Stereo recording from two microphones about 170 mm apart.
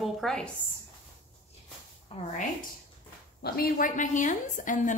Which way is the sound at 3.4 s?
65° left (ahead or behind).